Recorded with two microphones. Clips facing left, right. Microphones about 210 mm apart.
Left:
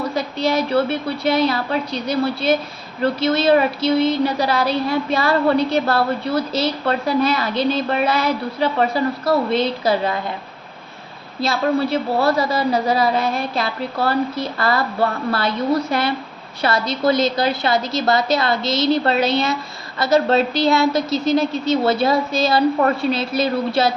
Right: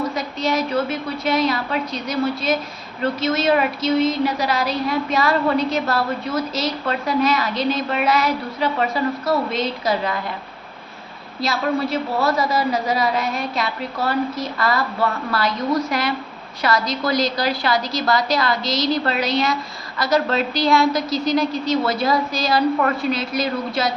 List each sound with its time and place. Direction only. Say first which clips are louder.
0.1 s a woman's voice: left 2 dB; 30° left (ahead or behind)
11.3 s a woman's voice: left 3 dB; 30° left (ahead or behind)